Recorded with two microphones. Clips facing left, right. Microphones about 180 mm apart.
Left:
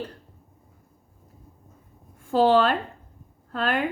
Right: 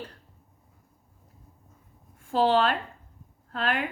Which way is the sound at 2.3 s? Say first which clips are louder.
Left 4 dB; 40° left (ahead or behind).